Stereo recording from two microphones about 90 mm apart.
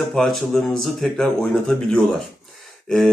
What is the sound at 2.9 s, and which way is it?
Speech, 5° left (ahead or behind).